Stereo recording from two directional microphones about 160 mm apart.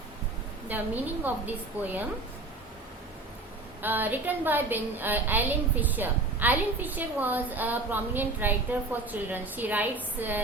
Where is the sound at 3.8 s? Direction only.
10° right (ahead or behind).